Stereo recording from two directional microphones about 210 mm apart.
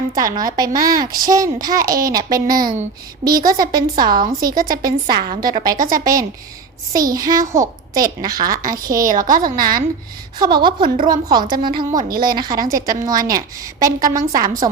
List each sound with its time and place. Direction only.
0.1 s a woman's voice: 15° right (ahead or behind)
5.7 s a woman's voice: 40° right (ahead or behind)
6.9 s a woman's voice: 15° right (ahead or behind)
9.0 s a woman's voice: 40° right (ahead or behind)
10.3 s a woman's voice: 20° right (ahead or behind)
10.8 s a woman's voice: 40° right (ahead or behind)
11.1 s a woman's voice: 20° right (ahead or behind)